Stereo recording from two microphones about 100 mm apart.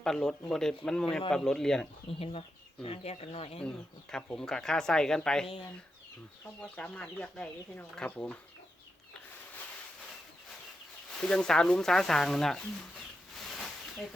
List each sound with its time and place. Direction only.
0.0 s speech: 5° left (ahead or behind)
2.0 s speech: 75° left (ahead or behind)
2.8 s speech: 90° left
3.6 s speech: 5° left (ahead or behind)
6.6 s speech: 15° left (ahead or behind)
11.2 s speech: 10° left (ahead or behind)
13.4 s snake: centre (ahead or behind)